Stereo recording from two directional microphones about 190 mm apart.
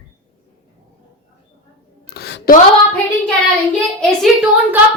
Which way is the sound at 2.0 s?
55° left (ahead or behind).